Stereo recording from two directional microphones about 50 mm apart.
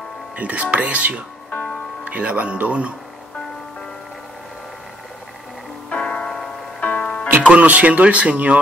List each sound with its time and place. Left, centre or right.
0.4 s speech: right
5.9 s music: left
6.8 s music: left
7.5 s speech: right